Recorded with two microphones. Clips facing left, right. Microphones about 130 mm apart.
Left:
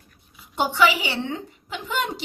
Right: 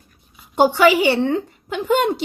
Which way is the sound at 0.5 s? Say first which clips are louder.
Right 7 dB; 50° right (ahead or behind).